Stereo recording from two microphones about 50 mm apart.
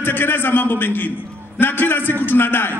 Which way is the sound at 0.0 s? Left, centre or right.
Left.